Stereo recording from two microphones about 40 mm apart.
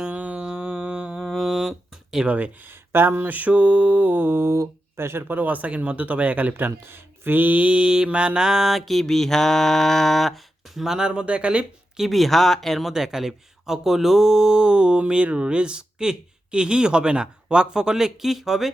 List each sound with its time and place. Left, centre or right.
0.0 s a sound: right
0.3 s a sound: right
1.1 s a sound: centre
2.2 s speech: right
2.6 s mantra: right
4.9 s speech: right
5.4 s speech: right
6.5 s speech: right
7.5 s speech: right
8.4 s mantra: centre
8.8 s mantra: centre
10.8 s speech: centre
11.9 s speech: centre
12.9 s speech: centre